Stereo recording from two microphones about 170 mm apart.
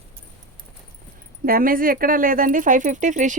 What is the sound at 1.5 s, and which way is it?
Speech, 55° right (ahead or behind).